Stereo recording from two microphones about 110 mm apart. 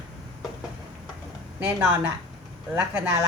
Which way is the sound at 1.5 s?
15° right (ahead or behind).